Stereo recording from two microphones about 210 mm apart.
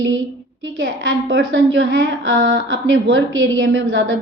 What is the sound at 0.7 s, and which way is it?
A woman's voice, 60° right (ahead or behind).